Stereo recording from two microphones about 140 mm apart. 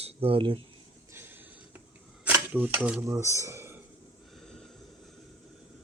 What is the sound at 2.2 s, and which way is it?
Speech, 10° right (ahead or behind).